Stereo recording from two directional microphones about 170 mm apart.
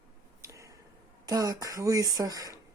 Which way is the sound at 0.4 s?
20° right (ahead or behind).